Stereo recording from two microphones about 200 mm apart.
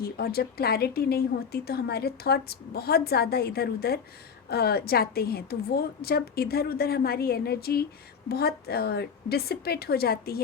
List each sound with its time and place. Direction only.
0.0 s speech: 50° left (ahead or behind)